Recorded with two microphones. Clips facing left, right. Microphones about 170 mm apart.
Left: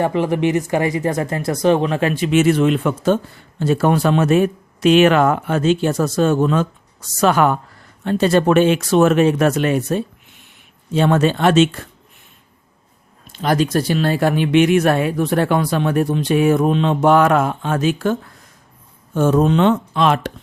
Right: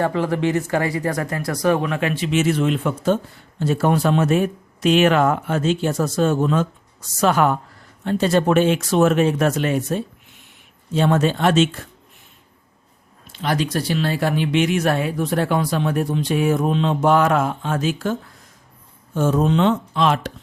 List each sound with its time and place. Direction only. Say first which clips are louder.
0.0 s speech: left 3 dB; 15° left (ahead or behind); by 11.9 s 70° left (ahead or behind)
13.2 s speech: left 5 dB; 45° left (ahead or behind); by 20.3 s 60° left (ahead or behind)